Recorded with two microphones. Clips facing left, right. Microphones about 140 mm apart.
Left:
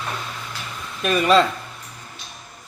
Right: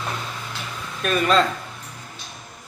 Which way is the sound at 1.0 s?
10° left (ahead or behind).